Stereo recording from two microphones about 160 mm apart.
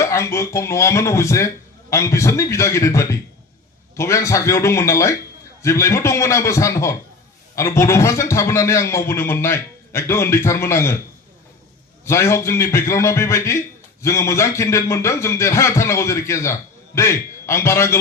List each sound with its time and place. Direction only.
0.0 s a man's voice: 15° left (ahead or behind)
12.0 s a man's voice: 15° left (ahead or behind)